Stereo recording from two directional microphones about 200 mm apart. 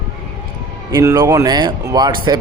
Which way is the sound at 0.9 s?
15° right (ahead or behind).